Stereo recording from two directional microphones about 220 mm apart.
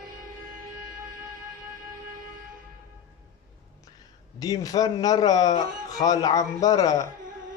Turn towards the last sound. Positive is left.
turn(degrees=15)  # may be behind; listen again after turning